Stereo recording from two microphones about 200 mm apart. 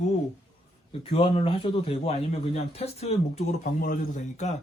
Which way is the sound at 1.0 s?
30° left (ahead or behind).